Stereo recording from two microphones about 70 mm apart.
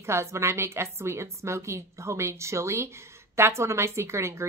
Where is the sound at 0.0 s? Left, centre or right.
Right.